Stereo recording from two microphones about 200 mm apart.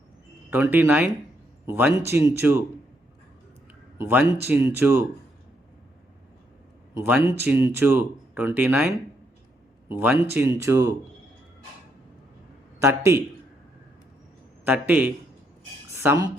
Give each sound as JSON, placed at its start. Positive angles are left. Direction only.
{"t": 0.5, "sound": "a man's voice", "side_deg": -10}
{"t": 3.9, "sound": "a man's voice", "side_deg": -10}
{"t": 6.9, "sound": "a man's voice", "side_deg": -15}
{"t": 9.9, "sound": "a man's voice", "side_deg": -10}
{"t": 12.8, "sound": "a man's voice", "side_deg": -15}
{"t": 14.6, "sound": "a man's voice", "side_deg": -10}